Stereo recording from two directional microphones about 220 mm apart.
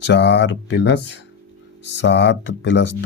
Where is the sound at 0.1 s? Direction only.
50° left (ahead or behind).